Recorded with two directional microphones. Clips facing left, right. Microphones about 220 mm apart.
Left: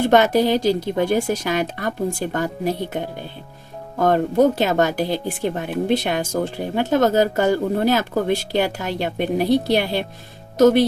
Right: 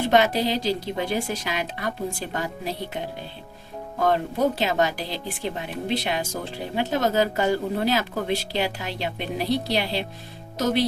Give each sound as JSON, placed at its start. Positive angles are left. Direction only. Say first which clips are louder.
{"t": 0.0, "sound": "speech", "louder": "left 5 dB", "side_deg": 50}
{"t": 4.0, "sound": "speech", "louder": "left 6 dB", "side_deg": 50}